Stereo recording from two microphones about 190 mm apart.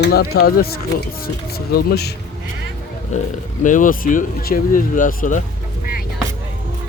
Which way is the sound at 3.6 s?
45° left (ahead or behind).